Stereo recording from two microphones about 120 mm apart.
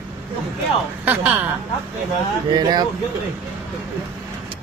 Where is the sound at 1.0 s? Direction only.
15° right (ahead or behind).